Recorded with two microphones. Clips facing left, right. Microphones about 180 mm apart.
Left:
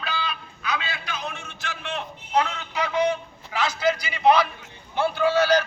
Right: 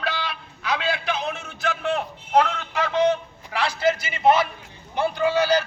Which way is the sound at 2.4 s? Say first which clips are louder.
Right 3 dB; 60° right (ahead or behind).